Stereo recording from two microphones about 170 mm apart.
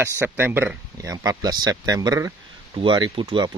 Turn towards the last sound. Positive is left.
turn(degrees=-30)  # may be behind; listen again after turning